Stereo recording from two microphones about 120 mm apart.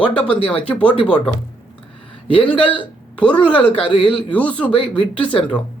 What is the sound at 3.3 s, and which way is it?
Speech, 40° left (ahead or behind).